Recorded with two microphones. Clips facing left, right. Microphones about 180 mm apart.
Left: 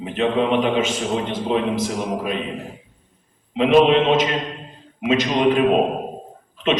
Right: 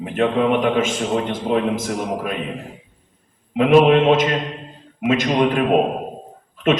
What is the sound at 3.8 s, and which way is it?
A man's voice, 50° right (ahead or behind).